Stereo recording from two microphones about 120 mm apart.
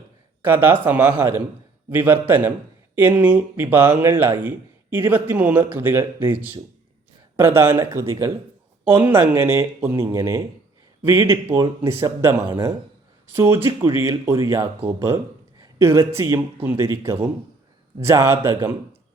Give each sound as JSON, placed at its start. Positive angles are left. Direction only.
{"t": 0.4, "sound": "speech", "side_deg": -15}
{"t": 13.3, "sound": "speech", "side_deg": -20}